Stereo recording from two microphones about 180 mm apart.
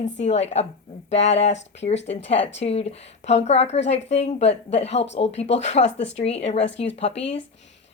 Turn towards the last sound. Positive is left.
turn(degrees=35)  # may be behind; listen again after turning